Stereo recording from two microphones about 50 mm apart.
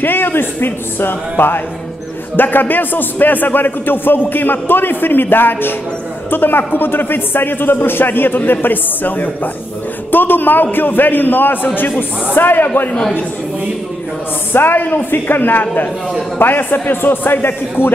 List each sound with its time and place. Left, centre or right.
0.0 s a man's voice: left
14.5 s a man's voice: left